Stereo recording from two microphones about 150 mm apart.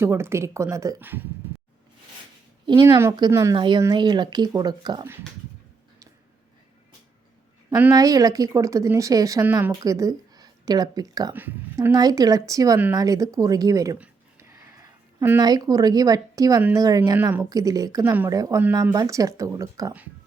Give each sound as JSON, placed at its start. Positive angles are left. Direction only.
{"t": 0.0, "sound": "speech", "side_deg": -15}
{"t": 3.0, "sound": "a woman's voice", "side_deg": -25}
{"t": 7.9, "sound": "a woman's voice", "side_deg": -25}
{"t": 14.3, "sound": "a sound", "side_deg": -20}
{"t": 15.4, "sound": "a woman's voice", "side_deg": -25}
{"t": 17.2, "sound": "a woman's voice", "side_deg": -10}